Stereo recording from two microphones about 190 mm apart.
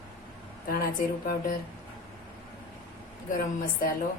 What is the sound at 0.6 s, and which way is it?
Speech, 50° left (ahead or behind).